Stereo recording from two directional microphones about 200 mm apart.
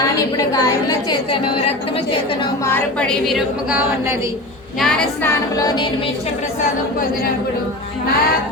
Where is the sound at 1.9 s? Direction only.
25° left (ahead or behind).